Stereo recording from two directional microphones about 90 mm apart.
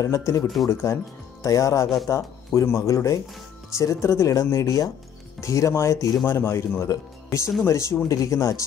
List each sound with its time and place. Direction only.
0.0 s speech: 35° left (ahead or behind)